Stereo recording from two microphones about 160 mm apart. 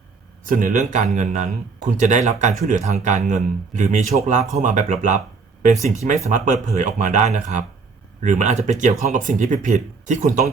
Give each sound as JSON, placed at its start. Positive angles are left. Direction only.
{"t": 0.4, "sound": "a man's voice", "side_deg": -55}
{"t": 6.3, "sound": "a man's voice", "side_deg": -50}